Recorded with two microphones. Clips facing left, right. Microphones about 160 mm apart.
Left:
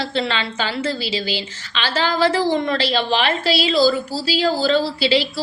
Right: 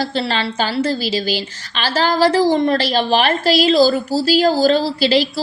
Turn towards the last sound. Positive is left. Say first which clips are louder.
# right 2 dB
turn(degrees=-40)  # may be behind; listen again after turning